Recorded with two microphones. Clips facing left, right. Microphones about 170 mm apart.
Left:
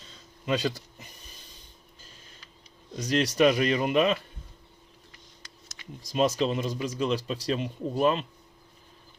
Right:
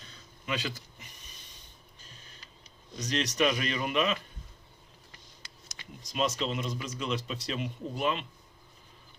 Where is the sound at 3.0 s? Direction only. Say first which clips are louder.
Left 6 dB; 30° left (ahead or behind).